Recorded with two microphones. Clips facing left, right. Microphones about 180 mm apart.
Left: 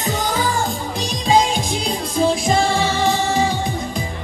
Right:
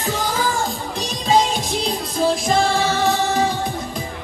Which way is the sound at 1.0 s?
Centre (ahead or behind).